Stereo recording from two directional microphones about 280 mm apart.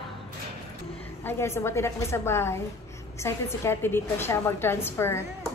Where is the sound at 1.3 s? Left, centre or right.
Centre.